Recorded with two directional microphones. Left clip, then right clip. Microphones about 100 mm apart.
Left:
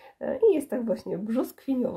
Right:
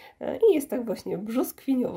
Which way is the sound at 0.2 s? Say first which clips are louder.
Right 1 dB; 35° right (ahead or behind).